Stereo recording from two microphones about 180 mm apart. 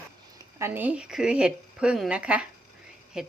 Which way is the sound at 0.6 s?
10° right (ahead or behind).